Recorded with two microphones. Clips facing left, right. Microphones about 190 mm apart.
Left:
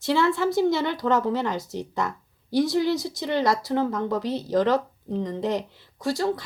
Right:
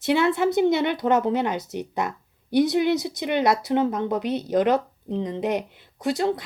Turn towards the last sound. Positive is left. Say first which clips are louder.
# right 2 dB
turn(degrees=-20)  # may be behind; listen again after turning